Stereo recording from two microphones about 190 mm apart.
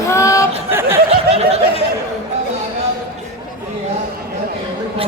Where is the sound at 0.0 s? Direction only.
15° left (ahead or behind).